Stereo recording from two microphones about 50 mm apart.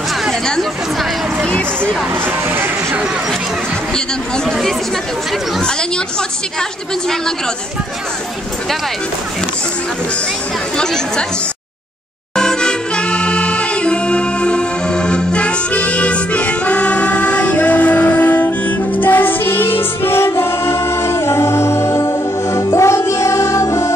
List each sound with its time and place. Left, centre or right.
0.3 s chatter: centre
2.5 s a sound: right
12.4 s music: centre; by 20.2 s left
20.2 s a capella: left